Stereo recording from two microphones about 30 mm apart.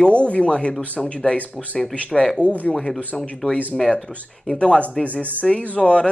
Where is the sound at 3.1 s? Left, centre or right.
Left.